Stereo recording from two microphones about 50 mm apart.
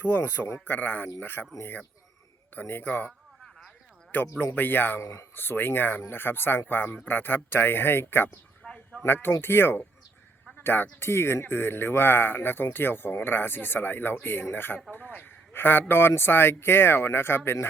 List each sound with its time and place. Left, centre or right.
0.0 s speech: left
4.1 s speech: left
4.9 s speech: left
5.3 s speech: left
8.6 s a sound: centre
9.0 s speech: left
14.8 s speech: left
15.5 s speech: left